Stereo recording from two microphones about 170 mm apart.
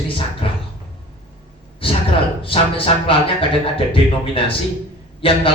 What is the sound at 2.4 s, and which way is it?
A man's voice, 30° left (ahead or behind).